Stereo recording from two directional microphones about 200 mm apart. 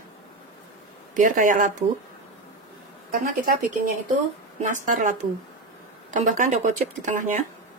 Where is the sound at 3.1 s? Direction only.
45° right (ahead or behind).